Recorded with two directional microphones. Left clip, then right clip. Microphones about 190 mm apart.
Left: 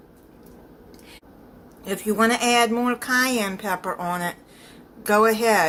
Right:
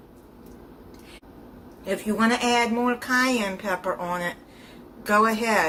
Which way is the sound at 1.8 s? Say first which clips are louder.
Left 3 dB; 45° left (ahead or behind).